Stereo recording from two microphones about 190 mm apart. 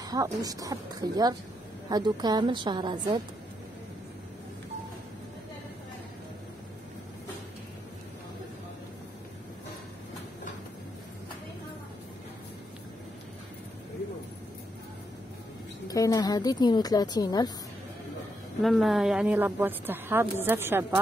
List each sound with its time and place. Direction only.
0.0 s speech: 20° right (ahead or behind)
15.9 s a woman's voice: 20° left (ahead or behind)
18.6 s a woman's voice: centre (ahead or behind)